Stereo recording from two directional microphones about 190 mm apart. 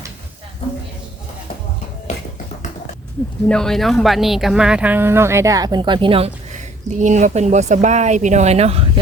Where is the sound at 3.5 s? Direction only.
5° left (ahead or behind).